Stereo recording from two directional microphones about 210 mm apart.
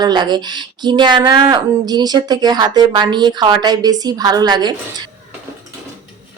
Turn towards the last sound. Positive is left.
turn(degrees=-20)  # may be behind; listen again after turning